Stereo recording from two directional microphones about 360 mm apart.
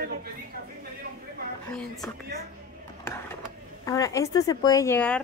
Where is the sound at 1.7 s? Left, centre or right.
Centre.